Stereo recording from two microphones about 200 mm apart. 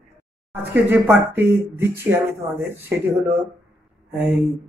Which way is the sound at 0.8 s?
10° right (ahead or behind).